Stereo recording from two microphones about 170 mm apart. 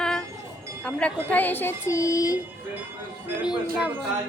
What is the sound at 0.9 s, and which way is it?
Speech, 5° left (ahead or behind).